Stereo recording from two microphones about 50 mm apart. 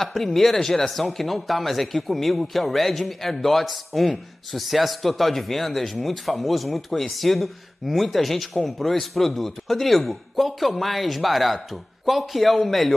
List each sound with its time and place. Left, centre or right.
0.0 s speech: centre